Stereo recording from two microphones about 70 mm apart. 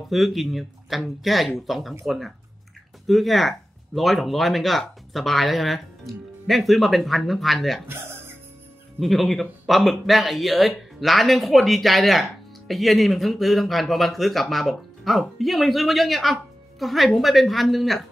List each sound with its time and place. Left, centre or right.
0.1 s speech: centre
7.8 s music: right
9.0 s speech: centre